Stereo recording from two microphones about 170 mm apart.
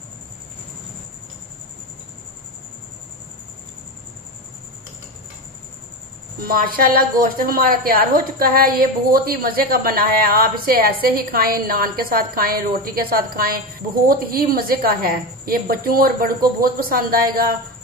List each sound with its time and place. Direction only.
6.4 s a woman's voice: 60° right (ahead or behind)